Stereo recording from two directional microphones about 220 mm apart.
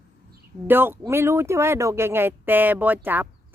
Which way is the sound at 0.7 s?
10° right (ahead or behind).